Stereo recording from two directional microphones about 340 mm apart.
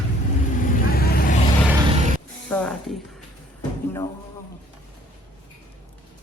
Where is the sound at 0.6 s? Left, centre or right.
Left.